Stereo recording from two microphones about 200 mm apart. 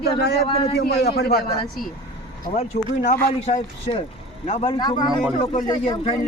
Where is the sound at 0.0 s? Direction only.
55° left (ahead or behind).